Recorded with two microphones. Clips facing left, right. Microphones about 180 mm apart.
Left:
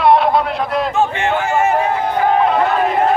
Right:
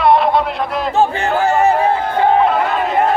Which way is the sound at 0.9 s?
35° right (ahead or behind).